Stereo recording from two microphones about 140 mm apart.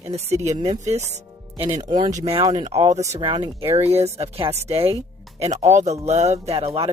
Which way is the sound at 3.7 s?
50° right (ahead or behind).